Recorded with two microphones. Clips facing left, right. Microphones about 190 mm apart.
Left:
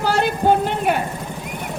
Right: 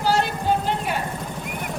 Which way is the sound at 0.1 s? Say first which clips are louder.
Left 4 dB; 60° left (ahead or behind).